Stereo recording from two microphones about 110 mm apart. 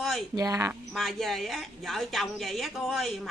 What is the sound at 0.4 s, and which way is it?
Speech, 30° right (ahead or behind).